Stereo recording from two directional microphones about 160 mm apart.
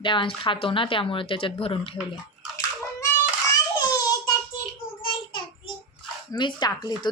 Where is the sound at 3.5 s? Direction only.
25° left (ahead or behind).